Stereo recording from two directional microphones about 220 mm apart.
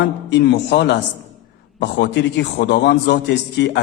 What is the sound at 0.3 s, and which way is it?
A man's voice, 50° left (ahead or behind).